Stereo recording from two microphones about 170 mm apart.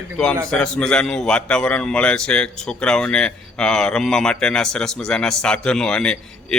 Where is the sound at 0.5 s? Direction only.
5° left (ahead or behind).